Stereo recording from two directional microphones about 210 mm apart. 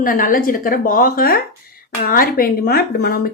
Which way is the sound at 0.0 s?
40° left (ahead or behind).